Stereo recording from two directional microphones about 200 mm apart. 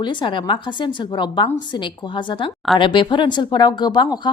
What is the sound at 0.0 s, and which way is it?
Speech, 25° left (ahead or behind).